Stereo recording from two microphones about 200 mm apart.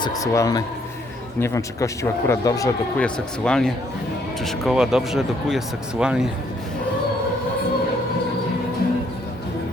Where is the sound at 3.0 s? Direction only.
5° left (ahead or behind).